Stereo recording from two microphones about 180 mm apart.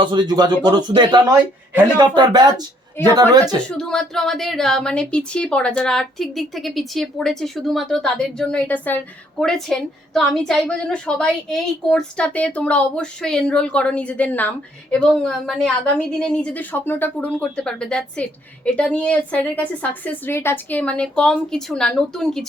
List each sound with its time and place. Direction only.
0.0 s speech: 25° right (ahead or behind)
3.8 s a woman's voice: 5° left (ahead or behind)